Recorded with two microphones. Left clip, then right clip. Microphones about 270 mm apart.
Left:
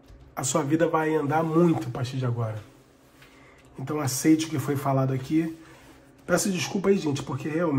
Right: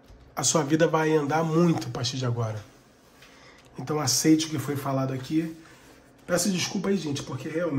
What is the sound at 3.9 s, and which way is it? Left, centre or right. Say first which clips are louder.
A man's voice: right 1 dB; centre.